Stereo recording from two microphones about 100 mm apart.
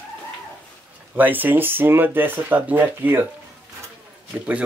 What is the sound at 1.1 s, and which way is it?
Speech, 20° right (ahead or behind).